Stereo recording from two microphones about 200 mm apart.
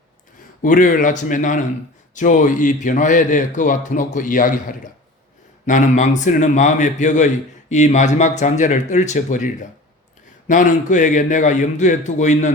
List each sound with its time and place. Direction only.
0.6 s a man's voice: 40° left (ahead or behind)
5.6 s a man's voice: 40° left (ahead or behind)
10.5 s a man's voice: 40° left (ahead or behind)